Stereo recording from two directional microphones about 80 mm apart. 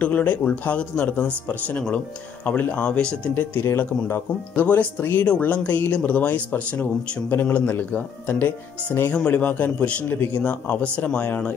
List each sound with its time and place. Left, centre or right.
0.0 s speech: centre
3.3 s speech: left